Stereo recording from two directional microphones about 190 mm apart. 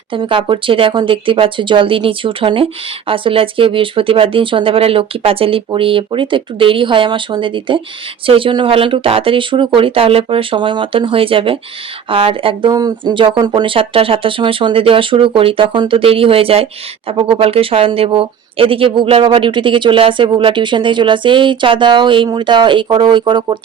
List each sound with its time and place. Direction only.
0.1 s speech: 25° right (ahead or behind)